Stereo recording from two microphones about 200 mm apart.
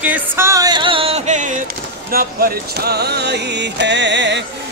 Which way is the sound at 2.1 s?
50° right (ahead or behind).